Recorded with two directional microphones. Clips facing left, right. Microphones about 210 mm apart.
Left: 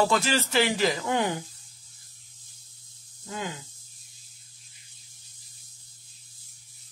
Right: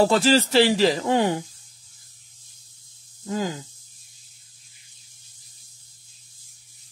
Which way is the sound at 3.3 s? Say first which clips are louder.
Right 8 dB; 35° right (ahead or behind).